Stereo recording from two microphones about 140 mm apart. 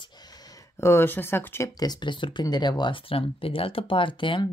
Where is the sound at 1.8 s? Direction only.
30° left (ahead or behind).